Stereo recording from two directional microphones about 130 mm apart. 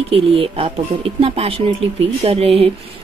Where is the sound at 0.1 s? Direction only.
45° right (ahead or behind).